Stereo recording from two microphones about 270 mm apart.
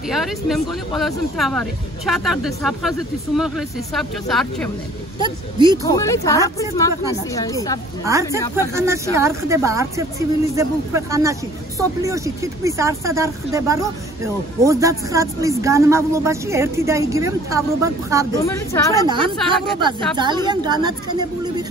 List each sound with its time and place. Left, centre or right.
0.1 s speech: centre
5.2 s speech: centre
5.9 s speech: centre
8.0 s speech: centre
18.4 s speech: centre
19.0 s speech: centre